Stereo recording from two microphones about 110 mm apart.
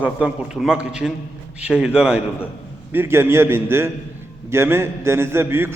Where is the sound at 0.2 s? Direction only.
10° right (ahead or behind).